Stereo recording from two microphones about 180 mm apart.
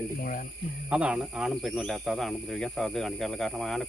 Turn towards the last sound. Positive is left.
turn(degrees=0)  # may be behind; listen again after turning